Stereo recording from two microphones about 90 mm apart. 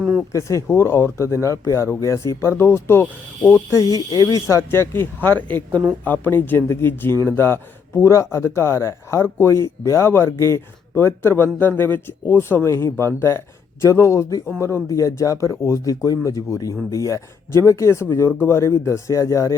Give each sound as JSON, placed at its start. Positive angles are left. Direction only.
{"t": 0.0, "sound": "a sound", "side_deg": -5}
{"t": 0.3, "sound": "speech", "side_deg": 35}
{"t": 3.9, "sound": "speech", "side_deg": 40}